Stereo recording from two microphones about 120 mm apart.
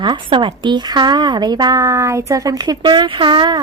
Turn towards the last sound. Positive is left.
turn(degrees=-45)  # may be behind; listen again after turning